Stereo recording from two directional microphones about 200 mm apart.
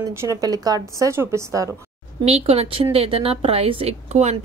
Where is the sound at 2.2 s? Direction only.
30° right (ahead or behind).